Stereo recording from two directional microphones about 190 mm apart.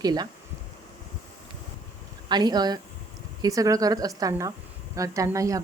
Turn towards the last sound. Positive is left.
turn(degrees=-15)  # may be behind; listen again after turning